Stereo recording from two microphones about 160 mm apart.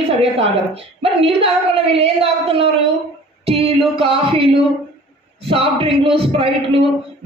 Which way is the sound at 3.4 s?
35° right (ahead or behind).